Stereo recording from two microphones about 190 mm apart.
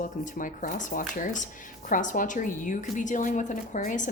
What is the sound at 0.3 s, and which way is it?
A woman's voice, 45° left (ahead or behind).